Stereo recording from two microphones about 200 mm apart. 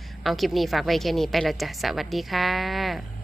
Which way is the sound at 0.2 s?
Centre (ahead or behind).